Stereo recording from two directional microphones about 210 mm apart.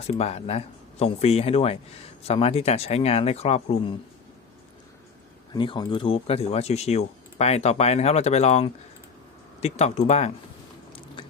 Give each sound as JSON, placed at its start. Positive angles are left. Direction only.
{"t": 0.1, "sound": "speech", "side_deg": 30}
{"t": 5.5, "sound": "speech", "side_deg": 20}
{"t": 11.2, "sound": "chewing", "side_deg": 20}